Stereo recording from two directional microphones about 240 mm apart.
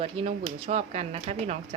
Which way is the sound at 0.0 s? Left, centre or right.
Right.